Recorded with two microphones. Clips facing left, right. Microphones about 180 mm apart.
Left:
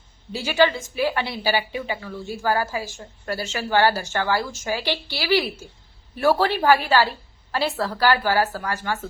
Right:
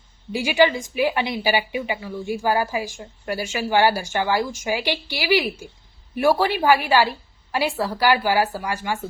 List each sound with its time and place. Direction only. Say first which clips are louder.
0.3 s a woman's voice: right 2 dB; 15° right (ahead or behind)